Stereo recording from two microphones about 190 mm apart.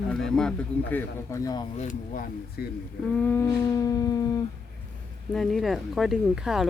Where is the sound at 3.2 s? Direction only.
10° left (ahead or behind).